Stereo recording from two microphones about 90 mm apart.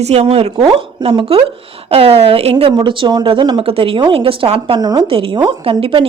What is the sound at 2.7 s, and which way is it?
Speech, 65° right (ahead or behind).